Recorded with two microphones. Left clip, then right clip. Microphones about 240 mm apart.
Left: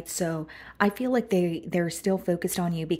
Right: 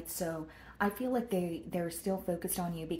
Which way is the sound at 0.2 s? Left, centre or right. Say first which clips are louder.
Left 7 dB; left.